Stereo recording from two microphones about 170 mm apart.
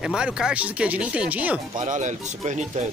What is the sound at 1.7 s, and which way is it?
Speech, 45° right (ahead or behind).